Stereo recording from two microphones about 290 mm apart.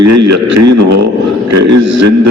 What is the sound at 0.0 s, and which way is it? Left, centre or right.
A man's voice, right.